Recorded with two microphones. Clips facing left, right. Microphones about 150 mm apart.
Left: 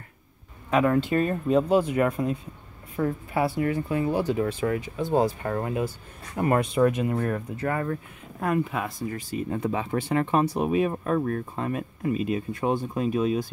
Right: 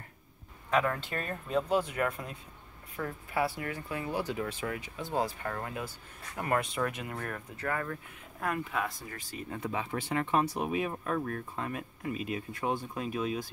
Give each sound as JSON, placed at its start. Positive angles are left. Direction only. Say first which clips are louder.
{"t": 0.7, "sound": "speech", "louder": "left 8 dB", "side_deg": 15}
{"t": 5.4, "sound": "speech", "louder": "left 9 dB", "side_deg": 25}
{"t": 9.5, "sound": "speech", "louder": "left 6 dB", "side_deg": 40}